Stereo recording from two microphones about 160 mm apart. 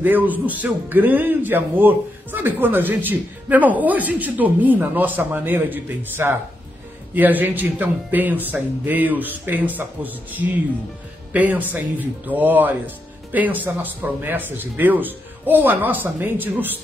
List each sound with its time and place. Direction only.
0.0 s a man's voice: 10° right (ahead or behind)